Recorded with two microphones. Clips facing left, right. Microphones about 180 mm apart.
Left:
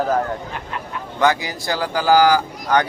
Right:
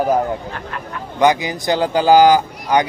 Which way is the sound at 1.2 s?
20° right (ahead or behind).